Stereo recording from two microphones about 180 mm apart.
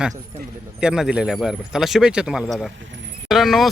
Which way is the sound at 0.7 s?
5° right (ahead or behind).